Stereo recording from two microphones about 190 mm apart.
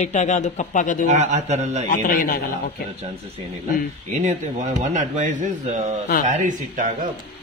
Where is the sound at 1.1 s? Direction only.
35° right (ahead or behind).